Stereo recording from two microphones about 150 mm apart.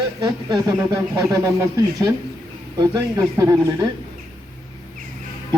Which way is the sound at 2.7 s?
25° right (ahead or behind).